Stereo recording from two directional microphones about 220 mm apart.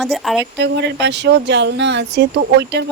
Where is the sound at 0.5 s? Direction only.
50° right (ahead or behind).